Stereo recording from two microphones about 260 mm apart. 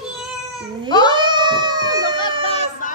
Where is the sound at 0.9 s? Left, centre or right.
Centre.